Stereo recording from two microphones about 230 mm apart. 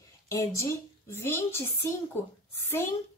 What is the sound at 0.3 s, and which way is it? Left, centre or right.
Speech, centre.